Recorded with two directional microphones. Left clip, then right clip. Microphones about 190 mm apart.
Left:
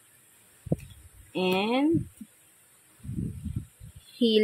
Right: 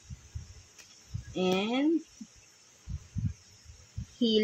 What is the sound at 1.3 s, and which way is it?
Speech, 50° left (ahead or behind).